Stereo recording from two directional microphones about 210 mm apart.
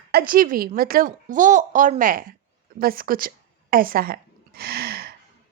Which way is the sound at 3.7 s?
45° right (ahead or behind).